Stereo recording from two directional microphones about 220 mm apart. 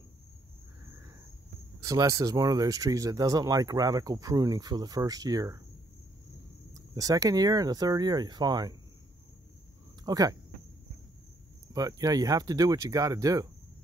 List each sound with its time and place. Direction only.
1.8 s speech: 15° right (ahead or behind)
6.7 s speech: 15° right (ahead or behind)
10.0 s speech: 15° right (ahead or behind)
11.7 s speech: 15° right (ahead or behind)